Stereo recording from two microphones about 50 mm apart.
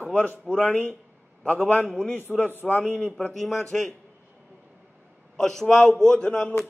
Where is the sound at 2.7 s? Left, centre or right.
Left.